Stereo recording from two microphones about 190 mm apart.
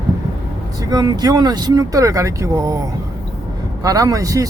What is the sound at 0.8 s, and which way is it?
Speech, 20° right (ahead or behind).